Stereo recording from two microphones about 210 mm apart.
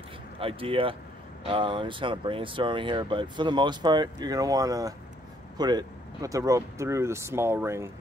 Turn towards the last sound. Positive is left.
turn(degrees=-10)  # may be behind; listen again after turning